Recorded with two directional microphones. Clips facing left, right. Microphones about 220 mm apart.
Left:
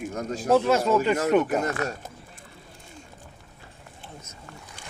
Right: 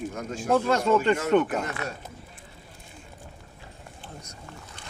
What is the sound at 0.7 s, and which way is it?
Speech, 5° left (ahead or behind).